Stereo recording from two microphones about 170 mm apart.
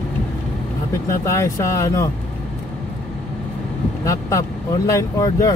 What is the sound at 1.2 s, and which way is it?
Speech, 15° left (ahead or behind).